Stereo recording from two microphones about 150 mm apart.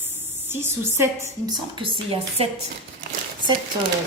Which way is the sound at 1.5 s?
30° right (ahead or behind).